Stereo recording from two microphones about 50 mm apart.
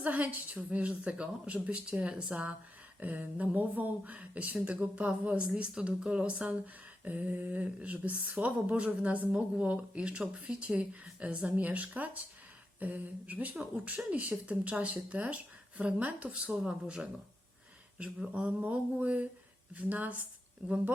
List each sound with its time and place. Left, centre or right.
0.0 s speech: right